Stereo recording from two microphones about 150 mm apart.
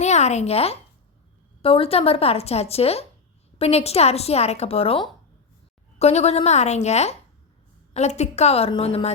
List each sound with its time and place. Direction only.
0.0 s a woman's voice: 50° left (ahead or behind)